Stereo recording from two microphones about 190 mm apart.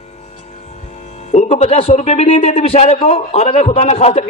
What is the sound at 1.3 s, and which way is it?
A man's voice, 35° left (ahead or behind).